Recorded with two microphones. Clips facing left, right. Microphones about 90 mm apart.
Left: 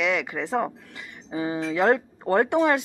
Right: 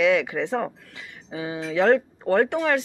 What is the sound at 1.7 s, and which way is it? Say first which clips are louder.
Speech: right 3 dB; 15° left (ahead or behind).